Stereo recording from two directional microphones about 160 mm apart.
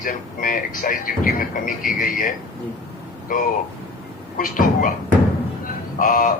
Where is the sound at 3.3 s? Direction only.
55° left (ahead or behind).